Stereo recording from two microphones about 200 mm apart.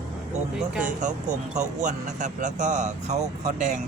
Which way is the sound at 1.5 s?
35° right (ahead or behind).